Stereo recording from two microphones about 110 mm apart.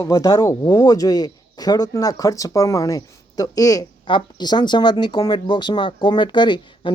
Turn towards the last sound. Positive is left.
turn(degrees=45)  # may be behind; listen again after turning